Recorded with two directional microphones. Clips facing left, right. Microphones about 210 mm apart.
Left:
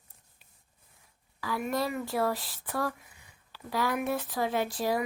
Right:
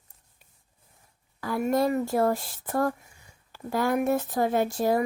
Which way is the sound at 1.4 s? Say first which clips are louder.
Right 6 dB; 50° right (ahead or behind).